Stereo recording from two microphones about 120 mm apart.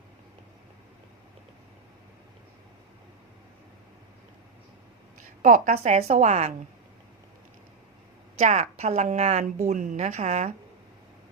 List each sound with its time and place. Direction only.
5.4 s a woman's voice: 90° right; by 6.5 s 65° right (ahead or behind)
8.4 s a woman's voice: 75° right (ahead or behind)